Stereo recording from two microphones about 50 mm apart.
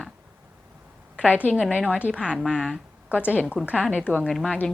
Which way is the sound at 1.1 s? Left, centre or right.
Left.